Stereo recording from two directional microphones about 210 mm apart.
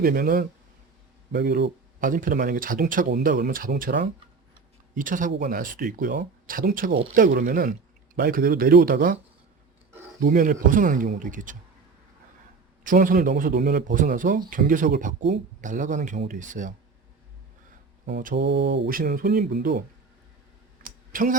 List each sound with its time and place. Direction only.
0.0 s mantra: 45° right (ahead or behind)
1.3 s speech: 50° right (ahead or behind)
8.1 s mantra: 45° right (ahead or behind)
9.9 s speech: 35° right (ahead or behind)
12.8 s speech: 40° right (ahead or behind)
18.0 s mantra: 40° right (ahead or behind)
18.3 s mantra: 55° right (ahead or behind)
20.8 s a sound: 40° right (ahead or behind)